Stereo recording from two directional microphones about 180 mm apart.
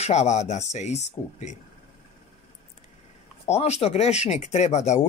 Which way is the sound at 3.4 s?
40° left (ahead or behind).